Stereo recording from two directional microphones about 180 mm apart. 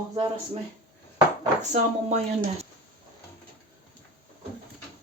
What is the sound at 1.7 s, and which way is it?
Speech, 40° right (ahead or behind).